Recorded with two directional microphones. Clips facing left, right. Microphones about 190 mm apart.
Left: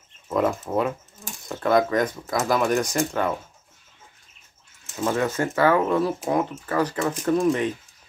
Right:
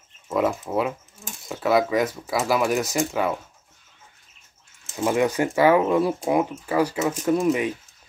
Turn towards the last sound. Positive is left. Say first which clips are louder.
# even
turn(degrees=-10)  # may be behind; listen again after turning